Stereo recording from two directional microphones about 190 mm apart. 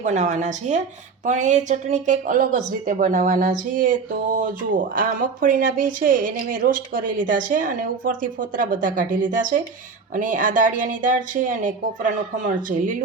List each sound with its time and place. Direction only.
0.0 s speech: 40° right (ahead or behind)